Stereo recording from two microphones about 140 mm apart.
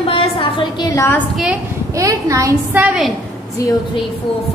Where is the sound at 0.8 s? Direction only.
20° left (ahead or behind).